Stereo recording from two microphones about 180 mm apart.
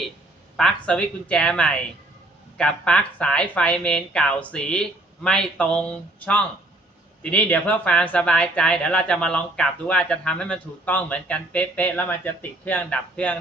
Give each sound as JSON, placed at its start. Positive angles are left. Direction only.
{"t": 0.5, "sound": "speech", "side_deg": 5}